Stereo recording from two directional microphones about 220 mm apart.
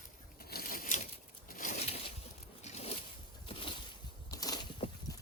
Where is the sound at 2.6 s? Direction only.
30° left (ahead or behind).